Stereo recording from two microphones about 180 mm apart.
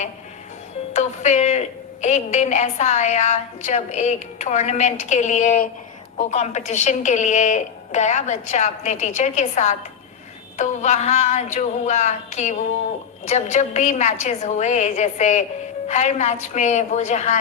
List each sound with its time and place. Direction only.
0.9 s a woman's voice: 40° left (ahead or behind)